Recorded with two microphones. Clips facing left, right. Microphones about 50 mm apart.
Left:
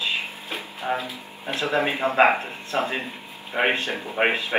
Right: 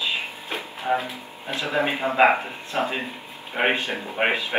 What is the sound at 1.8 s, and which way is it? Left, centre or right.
Speech, centre.